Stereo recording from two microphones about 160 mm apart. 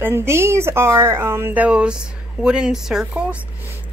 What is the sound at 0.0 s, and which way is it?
A woman's voice, 15° right (ahead or behind).